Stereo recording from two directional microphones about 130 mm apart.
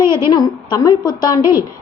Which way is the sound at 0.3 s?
35° left (ahead or behind).